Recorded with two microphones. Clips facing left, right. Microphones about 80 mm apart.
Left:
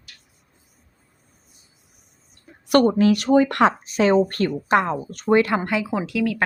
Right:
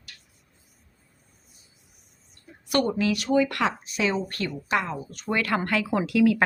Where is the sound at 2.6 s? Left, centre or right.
Left.